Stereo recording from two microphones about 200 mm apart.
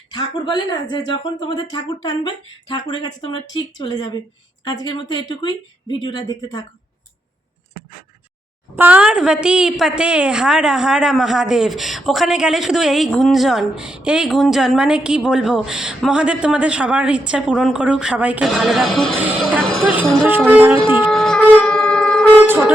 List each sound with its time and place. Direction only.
0.1 s speech: 20° left (ahead or behind)
8.7 s a woman's voice: 10° right (ahead or behind)
21.1 s siren: 5° left (ahead or behind)
22.4 s speech: 10° right (ahead or behind)